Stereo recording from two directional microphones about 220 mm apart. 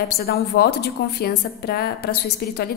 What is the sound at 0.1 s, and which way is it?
A woman's voice, 45° left (ahead or behind).